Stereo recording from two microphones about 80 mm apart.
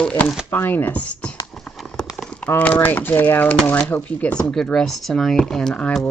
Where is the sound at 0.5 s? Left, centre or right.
Left.